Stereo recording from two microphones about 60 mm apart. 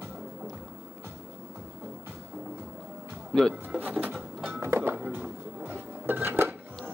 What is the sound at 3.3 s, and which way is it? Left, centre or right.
Speech, centre.